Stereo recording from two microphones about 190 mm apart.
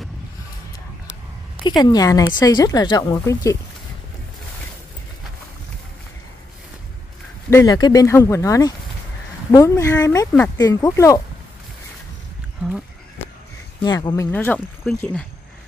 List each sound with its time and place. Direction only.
1.8 s speech: 20° left (ahead or behind)
7.4 s speech: 15° left (ahead or behind)
13.8 s speech: 20° left (ahead or behind)
14.3 s speech: 10° left (ahead or behind)